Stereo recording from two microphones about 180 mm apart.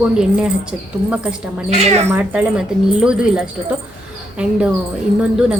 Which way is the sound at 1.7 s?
35° right (ahead or behind).